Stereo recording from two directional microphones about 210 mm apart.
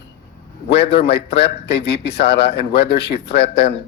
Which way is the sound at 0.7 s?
50° left (ahead or behind).